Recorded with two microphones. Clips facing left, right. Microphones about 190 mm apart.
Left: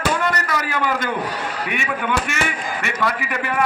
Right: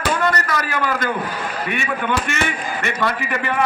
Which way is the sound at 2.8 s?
10° left (ahead or behind).